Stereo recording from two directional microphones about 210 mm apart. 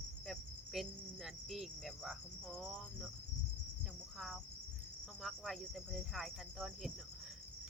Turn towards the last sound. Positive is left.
turn(degrees=0)  # may be behind; listen again after turning